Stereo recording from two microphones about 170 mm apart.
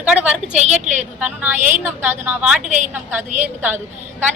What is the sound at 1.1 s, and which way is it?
A woman's voice, 10° right (ahead or behind).